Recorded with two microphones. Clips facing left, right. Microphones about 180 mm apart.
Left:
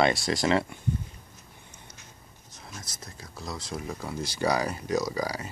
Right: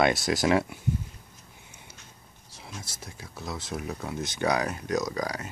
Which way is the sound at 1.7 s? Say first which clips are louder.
Even; 10° right (ahead or behind).